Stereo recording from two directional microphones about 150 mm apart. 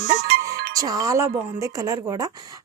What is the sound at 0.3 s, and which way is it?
Music, 90° right.